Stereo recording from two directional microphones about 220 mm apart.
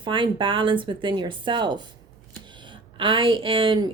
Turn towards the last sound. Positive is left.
turn(degrees=-25)  # may be behind; listen again after turning